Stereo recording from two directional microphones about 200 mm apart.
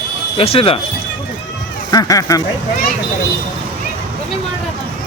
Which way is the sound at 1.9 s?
15° left (ahead or behind).